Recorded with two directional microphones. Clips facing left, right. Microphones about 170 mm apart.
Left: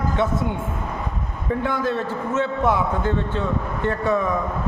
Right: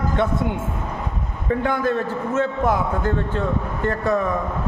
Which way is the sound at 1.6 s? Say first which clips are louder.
Right 2 dB; 50° right (ahead or behind).